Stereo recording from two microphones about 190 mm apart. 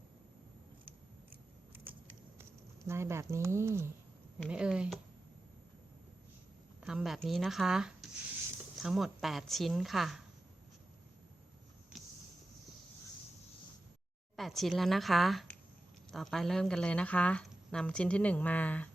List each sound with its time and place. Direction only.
1.7 s a sound: 10° right (ahead or behind)
2.4 s a woman's voice: 15° right (ahead or behind)
6.8 s a woman's voice: centre (ahead or behind)
14.3 s a woman's voice: centre (ahead or behind)